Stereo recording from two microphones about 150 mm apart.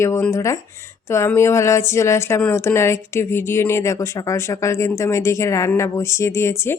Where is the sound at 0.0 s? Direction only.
20° left (ahead or behind).